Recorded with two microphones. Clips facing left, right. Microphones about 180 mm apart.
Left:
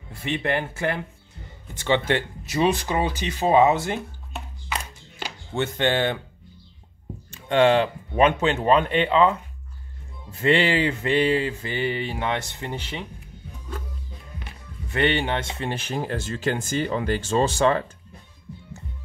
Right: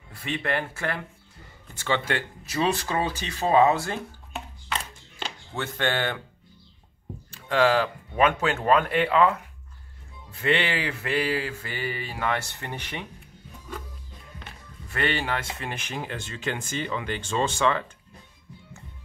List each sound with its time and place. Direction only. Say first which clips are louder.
0.1 s speech: left 3 dB; 25° left (ahead or behind)
4.3 s chopping: even; 5° left (ahead or behind)
5.5 s speech: left 5 dB; 25° left (ahead or behind)
7.4 s speech: left 4 dB; 30° left (ahead or behind)
10.3 s speech: left 5 dB; 30° left (ahead or behind); by 13.0 s 15° left (ahead or behind)
14.9 s speech: left 5 dB; 25° left (ahead or behind)